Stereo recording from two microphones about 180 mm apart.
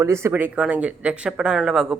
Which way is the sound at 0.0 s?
15° right (ahead or behind).